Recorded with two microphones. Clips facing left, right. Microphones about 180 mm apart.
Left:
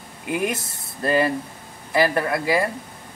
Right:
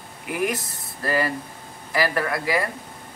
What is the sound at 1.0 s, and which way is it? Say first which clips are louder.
Speech: left 4 dB; 20° left (ahead or behind).